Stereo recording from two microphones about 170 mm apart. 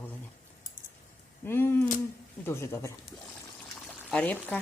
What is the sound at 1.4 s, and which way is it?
A woman's voice, 15° left (ahead or behind).